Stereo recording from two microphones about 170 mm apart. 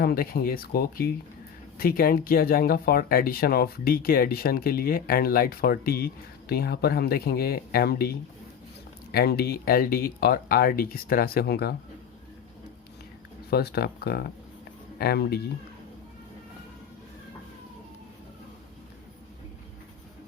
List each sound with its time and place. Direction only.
0.0 s speech: 60° left (ahead or behind)
9.1 s speech: 65° left (ahead or behind)
13.5 s speech: 70° left (ahead or behind)